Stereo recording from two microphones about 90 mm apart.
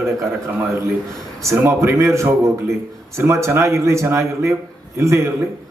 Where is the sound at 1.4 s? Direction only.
30° right (ahead or behind).